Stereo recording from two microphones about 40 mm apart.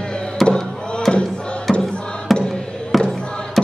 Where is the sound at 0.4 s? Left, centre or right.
Centre.